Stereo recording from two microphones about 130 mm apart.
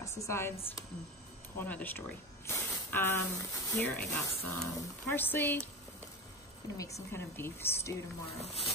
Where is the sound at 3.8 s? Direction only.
10° left (ahead or behind).